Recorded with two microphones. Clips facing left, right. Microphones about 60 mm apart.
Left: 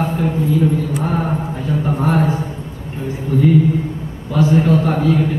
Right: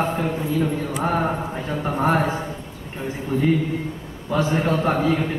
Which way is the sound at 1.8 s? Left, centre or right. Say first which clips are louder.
Left 2 dB; centre.